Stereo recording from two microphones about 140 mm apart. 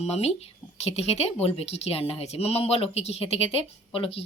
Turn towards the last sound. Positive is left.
turn(degrees=40)  # may be behind; listen again after turning